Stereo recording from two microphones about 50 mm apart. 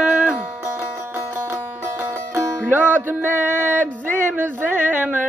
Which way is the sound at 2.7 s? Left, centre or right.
Right.